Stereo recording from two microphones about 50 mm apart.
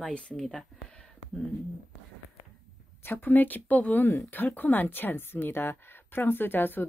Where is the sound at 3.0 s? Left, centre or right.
Left.